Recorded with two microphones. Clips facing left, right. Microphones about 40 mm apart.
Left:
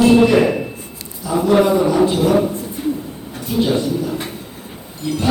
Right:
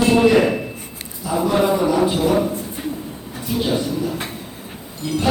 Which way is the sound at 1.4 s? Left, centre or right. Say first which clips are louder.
Left 4 dB; centre.